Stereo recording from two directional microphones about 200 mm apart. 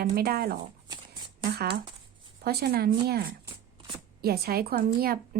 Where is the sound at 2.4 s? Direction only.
50° right (ahead or behind).